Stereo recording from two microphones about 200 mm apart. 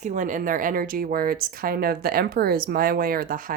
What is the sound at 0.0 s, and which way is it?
Speech, 40° right (ahead or behind).